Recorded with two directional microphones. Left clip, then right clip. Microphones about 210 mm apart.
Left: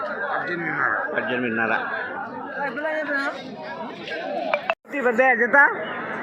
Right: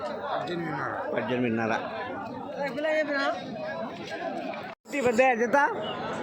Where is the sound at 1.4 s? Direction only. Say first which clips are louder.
Left 5 dB; 20° right (ahead or behind).